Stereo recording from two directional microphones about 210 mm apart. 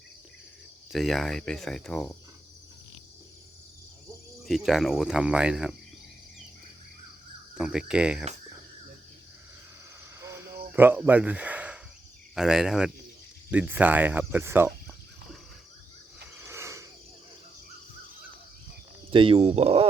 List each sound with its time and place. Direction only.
0.9 s speech: centre (ahead or behind)
4.4 s speech: centre (ahead or behind)
7.5 s speech: 5° right (ahead or behind)
10.2 s cricket: 15° right (ahead or behind)
10.8 s speech: 10° right (ahead or behind)
16.4 s a sound: 15° right (ahead or behind)
19.1 s speech: 25° right (ahead or behind)